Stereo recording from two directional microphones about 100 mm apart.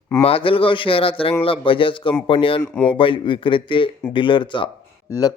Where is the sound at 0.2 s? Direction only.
70° left (ahead or behind).